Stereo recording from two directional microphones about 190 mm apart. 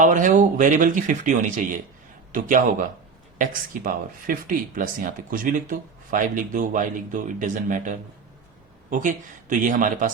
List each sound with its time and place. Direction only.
0.0 s speech: 40° right (ahead or behind)